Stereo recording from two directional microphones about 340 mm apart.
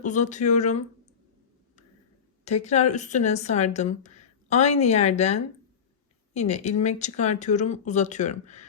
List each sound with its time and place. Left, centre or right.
0.0 s speech: left
2.4 s speech: centre